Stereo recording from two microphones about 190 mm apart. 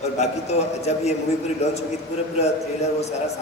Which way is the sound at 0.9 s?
35° left (ahead or behind).